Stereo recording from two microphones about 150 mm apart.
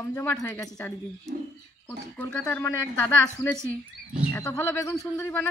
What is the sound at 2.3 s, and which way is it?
Speech, 20° left (ahead or behind).